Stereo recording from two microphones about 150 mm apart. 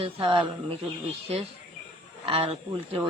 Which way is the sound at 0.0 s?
40° right (ahead or behind).